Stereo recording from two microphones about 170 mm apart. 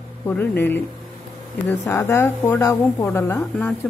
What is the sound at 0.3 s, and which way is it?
Speech, 15° left (ahead or behind).